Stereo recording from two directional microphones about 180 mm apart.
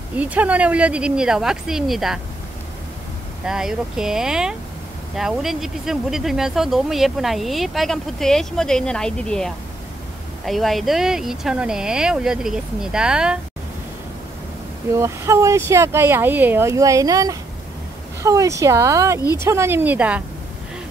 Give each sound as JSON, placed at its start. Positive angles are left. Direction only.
{"t": 0.2, "sound": "speech", "side_deg": -10}
{"t": 3.4, "sound": "speech", "side_deg": -5}
{"t": 15.0, "sound": "speech", "side_deg": -15}